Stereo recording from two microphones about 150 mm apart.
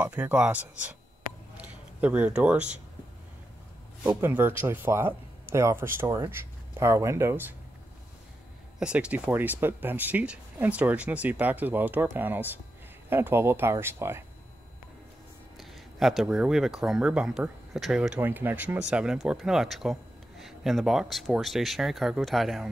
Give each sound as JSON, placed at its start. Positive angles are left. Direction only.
{"t": 0.0, "sound": "speech", "side_deg": -10}
{"t": 4.0, "sound": "speech", "side_deg": -10}
{"t": 8.7, "sound": "speech", "side_deg": -5}
{"t": 15.5, "sound": "speech", "side_deg": 0}